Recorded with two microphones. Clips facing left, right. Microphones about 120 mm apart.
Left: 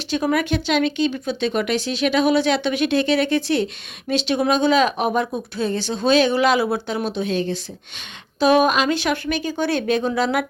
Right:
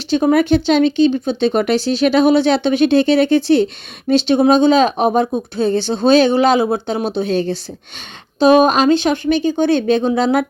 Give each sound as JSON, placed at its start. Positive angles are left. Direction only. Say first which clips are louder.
{"t": 0.1, "sound": "speech", "louder": "right 8 dB", "side_deg": -30}